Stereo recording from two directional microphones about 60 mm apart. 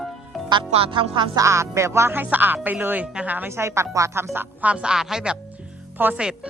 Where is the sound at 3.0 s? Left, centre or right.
Right.